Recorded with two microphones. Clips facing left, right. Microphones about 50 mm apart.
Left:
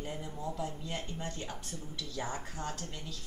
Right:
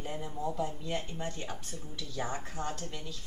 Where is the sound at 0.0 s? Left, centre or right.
Centre.